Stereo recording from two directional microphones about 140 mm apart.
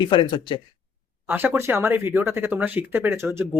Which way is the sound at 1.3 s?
15° right (ahead or behind).